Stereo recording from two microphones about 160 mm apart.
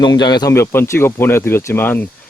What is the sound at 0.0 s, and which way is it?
Speech, 25° left (ahead or behind).